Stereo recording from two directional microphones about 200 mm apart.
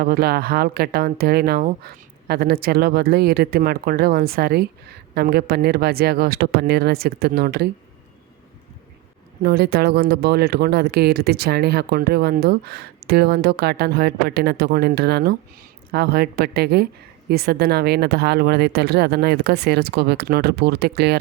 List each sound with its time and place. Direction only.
0.0 s speech: 50° right (ahead or behind)
9.4 s speech: 55° right (ahead or behind)